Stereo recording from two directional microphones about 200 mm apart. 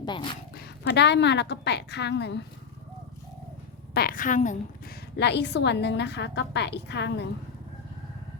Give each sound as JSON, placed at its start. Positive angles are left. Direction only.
{"t": 0.0, "sound": "speech", "side_deg": 25}
{"t": 0.5, "sound": "a woman's voice", "side_deg": 55}
{"t": 3.9, "sound": "a woman's voice", "side_deg": 45}
{"t": 5.1, "sound": "a woman's voice", "side_deg": 60}